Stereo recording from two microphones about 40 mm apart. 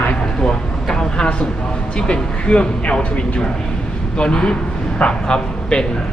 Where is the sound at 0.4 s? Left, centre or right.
Centre.